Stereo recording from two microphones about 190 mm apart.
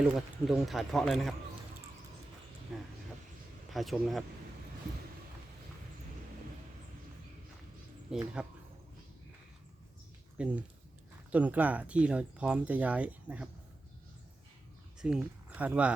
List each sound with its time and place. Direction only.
0.1 s a man's voice: centre (ahead or behind)
2.7 s a man's voice: centre (ahead or behind)
8.4 s a man's voice: 5° right (ahead or behind)
10.3 s speech: 5° right (ahead or behind)
14.9 s speech: 5° right (ahead or behind)